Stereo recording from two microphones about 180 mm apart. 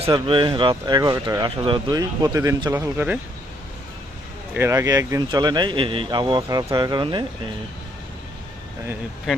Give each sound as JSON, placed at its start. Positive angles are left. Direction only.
{"t": 0.1, "sound": "speech", "side_deg": -30}
{"t": 4.5, "sound": "speech", "side_deg": -15}